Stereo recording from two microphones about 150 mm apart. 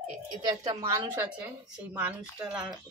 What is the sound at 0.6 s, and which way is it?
Speech, 25° right (ahead or behind).